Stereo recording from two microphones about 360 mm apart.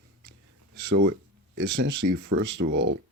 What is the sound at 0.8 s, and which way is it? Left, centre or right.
Speech, right.